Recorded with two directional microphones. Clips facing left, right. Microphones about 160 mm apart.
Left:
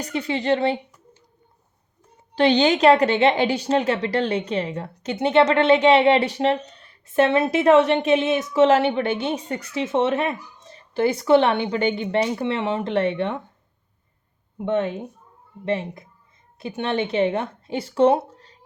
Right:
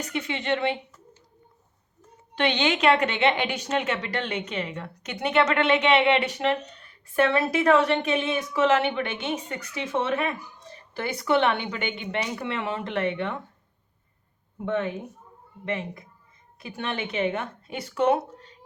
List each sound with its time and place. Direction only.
0.0 s a woman's voice: 35° left (ahead or behind)
2.3 s a woman's voice: 35° left (ahead or behind)
14.6 s a woman's voice: 25° left (ahead or behind)